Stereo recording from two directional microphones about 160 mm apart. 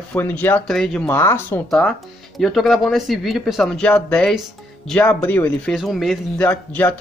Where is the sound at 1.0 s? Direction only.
15° left (ahead or behind).